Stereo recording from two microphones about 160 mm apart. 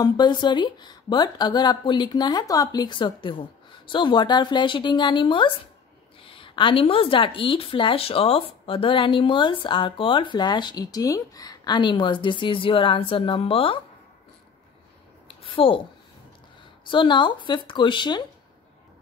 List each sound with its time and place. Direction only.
0.0 s speech: 25° left (ahead or behind)
15.2 s a sound: 35° left (ahead or behind)
16.8 s speech: 30° left (ahead or behind)